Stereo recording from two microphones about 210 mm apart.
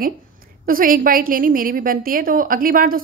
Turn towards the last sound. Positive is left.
turn(degrees=-40)  # may be behind; listen again after turning